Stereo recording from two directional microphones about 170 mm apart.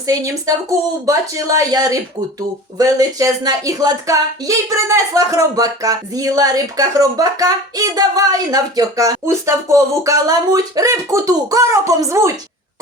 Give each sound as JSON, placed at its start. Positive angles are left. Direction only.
{"t": 1.0, "sound": "speech", "side_deg": -20}